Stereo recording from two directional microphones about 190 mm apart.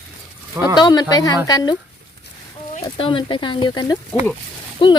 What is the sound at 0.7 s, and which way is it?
Speech, 20° left (ahead or behind).